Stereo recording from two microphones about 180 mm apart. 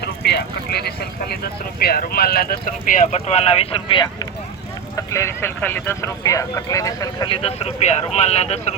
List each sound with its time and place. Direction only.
0.0 s vehicle: 65° left (ahead or behind)
1.8 s speech: 60° left (ahead or behind)
3.2 s speech: 35° left (ahead or behind); by 7.3 s 20° left (ahead or behind)
7.4 s speech: 35° left (ahead or behind)